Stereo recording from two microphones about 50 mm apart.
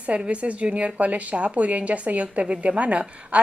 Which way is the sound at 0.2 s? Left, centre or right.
Right.